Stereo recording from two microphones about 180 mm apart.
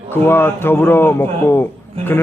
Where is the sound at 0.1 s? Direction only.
10° left (ahead or behind).